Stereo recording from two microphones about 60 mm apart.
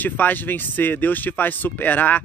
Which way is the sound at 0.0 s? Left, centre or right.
Left.